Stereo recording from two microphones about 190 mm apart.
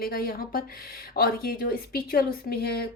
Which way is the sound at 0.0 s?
50° left (ahead or behind).